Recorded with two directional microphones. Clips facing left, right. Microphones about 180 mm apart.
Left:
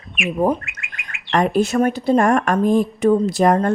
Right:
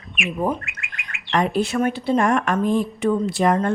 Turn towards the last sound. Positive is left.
turn(degrees=40)  # may be behind; listen again after turning